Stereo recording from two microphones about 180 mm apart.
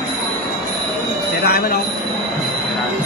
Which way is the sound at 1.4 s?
60° left (ahead or behind).